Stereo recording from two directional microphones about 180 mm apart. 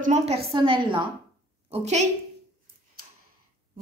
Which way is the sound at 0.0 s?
40° right (ahead or behind).